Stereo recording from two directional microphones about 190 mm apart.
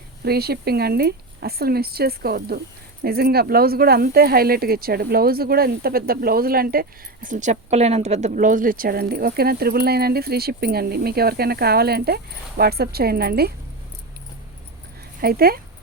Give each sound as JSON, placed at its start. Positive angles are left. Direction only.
{"t": 0.3, "sound": "speech", "side_deg": -55}
{"t": 15.2, "sound": "speech", "side_deg": -50}